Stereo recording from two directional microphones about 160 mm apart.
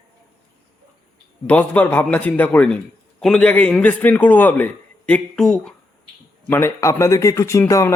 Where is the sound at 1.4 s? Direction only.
10° left (ahead or behind).